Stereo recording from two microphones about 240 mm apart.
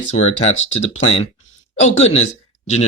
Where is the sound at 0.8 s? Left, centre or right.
Left.